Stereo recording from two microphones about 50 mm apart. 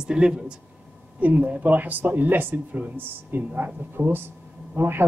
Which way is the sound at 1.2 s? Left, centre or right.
Right.